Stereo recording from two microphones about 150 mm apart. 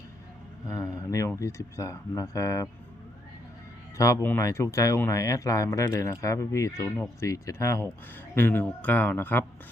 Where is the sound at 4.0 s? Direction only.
20° left (ahead or behind).